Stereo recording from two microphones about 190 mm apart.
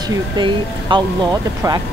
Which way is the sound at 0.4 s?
25° right (ahead or behind).